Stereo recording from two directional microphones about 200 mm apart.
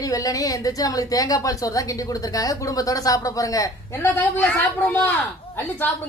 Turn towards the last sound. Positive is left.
turn(degrees=10)  # may be behind; listen again after turning